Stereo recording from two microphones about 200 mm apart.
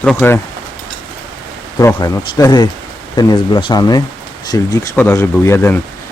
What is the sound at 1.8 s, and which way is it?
Speech, 15° left (ahead or behind).